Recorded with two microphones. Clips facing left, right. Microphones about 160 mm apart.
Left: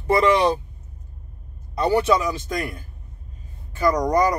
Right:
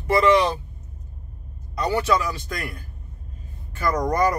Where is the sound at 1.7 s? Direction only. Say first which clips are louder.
Left 3 dB; 25° left (ahead or behind).